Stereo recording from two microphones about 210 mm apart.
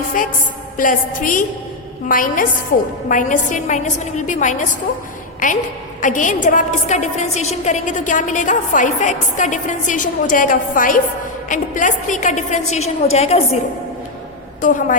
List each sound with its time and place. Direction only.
0.8 s a woman's voice: 40° left (ahead or behind)
14.6 s a woman's voice: 40° left (ahead or behind)